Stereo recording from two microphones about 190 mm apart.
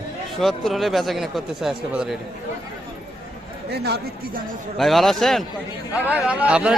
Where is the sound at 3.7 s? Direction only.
60° right (ahead or behind).